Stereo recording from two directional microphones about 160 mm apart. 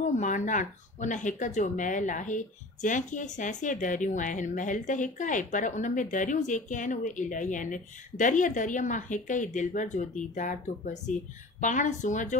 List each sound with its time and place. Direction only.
0.0 s speech: 50° left (ahead or behind)